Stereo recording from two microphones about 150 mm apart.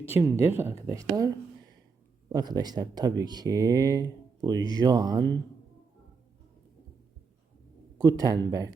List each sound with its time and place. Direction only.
0.1 s speech: 15° right (ahead or behind)
2.3 s speech: 25° right (ahead or behind)
7.9 s speech: 25° right (ahead or behind)